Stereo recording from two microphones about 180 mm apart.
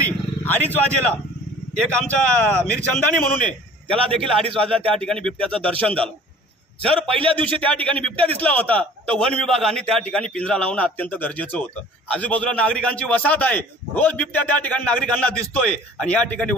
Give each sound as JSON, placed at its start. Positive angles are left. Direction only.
{"t": 0.0, "sound": "vehicle", "side_deg": 10}
{"t": 1.7, "sound": "a man's voice", "side_deg": 5}
{"t": 7.2, "sound": "a man's voice", "side_deg": -30}
{"t": 7.6, "sound": "a man's voice", "side_deg": 5}